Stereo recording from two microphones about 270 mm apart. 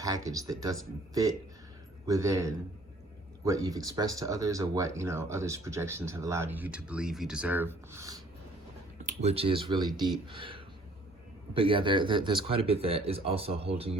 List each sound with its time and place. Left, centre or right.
0.0 s speech: centre
2.0 s speech: centre
9.2 s speech: right